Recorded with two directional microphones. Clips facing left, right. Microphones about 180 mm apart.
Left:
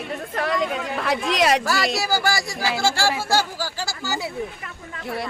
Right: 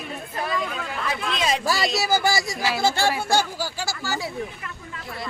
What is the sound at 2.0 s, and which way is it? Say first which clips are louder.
Speech: right 1 dB; 20° right (ahead or behind).